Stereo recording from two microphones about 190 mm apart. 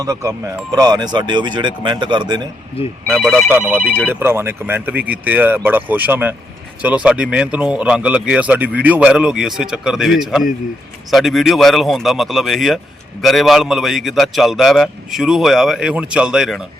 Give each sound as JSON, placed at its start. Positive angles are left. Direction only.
{"t": 0.0, "sound": "speech", "side_deg": -15}
{"t": 3.2, "sound": "speech", "side_deg": 0}
{"t": 4.1, "sound": "speech", "side_deg": -10}